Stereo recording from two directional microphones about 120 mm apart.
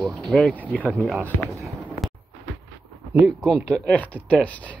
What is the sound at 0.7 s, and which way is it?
Speech, 15° left (ahead or behind).